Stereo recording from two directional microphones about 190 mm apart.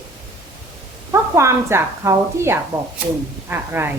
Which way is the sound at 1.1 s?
15° right (ahead or behind).